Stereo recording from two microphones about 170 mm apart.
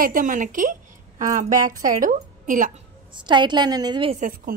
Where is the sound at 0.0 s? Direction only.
50° right (ahead or behind).